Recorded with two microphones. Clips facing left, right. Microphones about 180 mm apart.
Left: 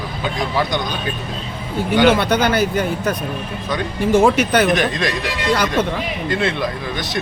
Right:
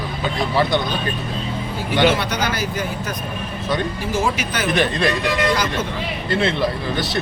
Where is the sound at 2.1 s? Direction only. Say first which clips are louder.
Left 6 dB; 55° left (ahead or behind).